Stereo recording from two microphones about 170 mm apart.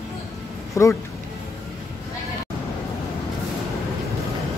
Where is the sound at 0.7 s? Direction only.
15° left (ahead or behind).